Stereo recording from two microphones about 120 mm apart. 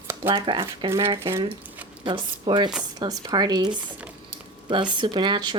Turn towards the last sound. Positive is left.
turn(degrees=-40)  # may be behind; listen again after turning